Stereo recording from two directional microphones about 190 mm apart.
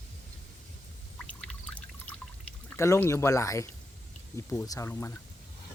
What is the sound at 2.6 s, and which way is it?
Speech, 15° left (ahead or behind).